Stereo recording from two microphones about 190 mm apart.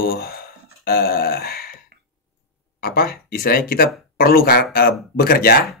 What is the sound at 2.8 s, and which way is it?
Speech, 50° left (ahead or behind).